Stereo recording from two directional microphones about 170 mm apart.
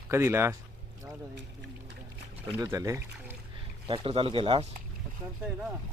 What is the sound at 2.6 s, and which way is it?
Speech, 20° right (ahead or behind).